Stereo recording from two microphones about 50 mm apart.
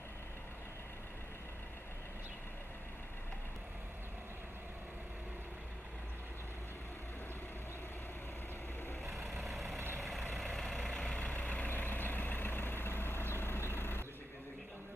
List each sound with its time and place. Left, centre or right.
9.1 s vehicle: centre
9.7 s vehicle: right
10.0 s vehicle: centre
10.8 s vehicle: centre; by 11.7 s left
11.7 s vehicle: left